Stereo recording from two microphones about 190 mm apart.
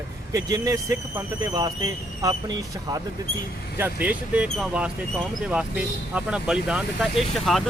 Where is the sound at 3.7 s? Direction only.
10° right (ahead or behind).